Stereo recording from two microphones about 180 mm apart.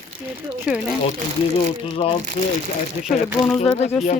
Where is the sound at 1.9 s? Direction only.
30° left (ahead or behind).